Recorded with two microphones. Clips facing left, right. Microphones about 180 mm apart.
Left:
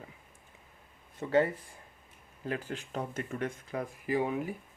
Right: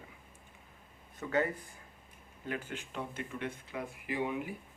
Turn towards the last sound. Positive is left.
turn(degrees=40)  # may be behind; listen again after turning